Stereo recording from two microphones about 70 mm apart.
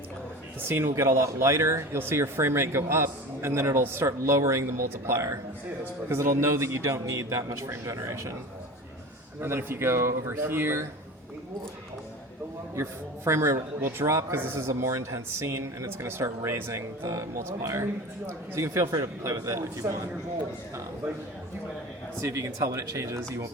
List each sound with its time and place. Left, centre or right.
0.7 s a man's voice: right
9.4 s speech: right
12.7 s a man's voice: right
17.1 s a man's voice: right
22.2 s a man's voice: right